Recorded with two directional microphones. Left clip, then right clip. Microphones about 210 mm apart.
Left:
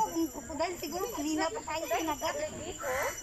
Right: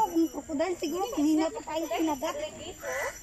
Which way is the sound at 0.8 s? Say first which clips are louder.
Right 6 dB; 35° right (ahead or behind).